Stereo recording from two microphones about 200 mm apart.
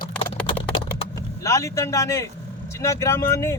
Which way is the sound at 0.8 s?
45° left (ahead or behind).